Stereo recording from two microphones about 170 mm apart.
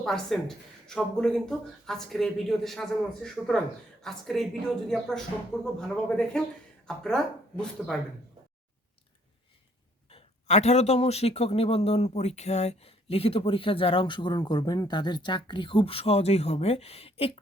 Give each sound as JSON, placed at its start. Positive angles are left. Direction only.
{"t": 0.0, "sound": "speech", "side_deg": 0}
{"t": 10.1, "sound": "speech", "side_deg": 35}